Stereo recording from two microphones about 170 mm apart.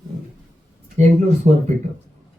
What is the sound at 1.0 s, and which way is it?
Speech, 45° right (ahead or behind).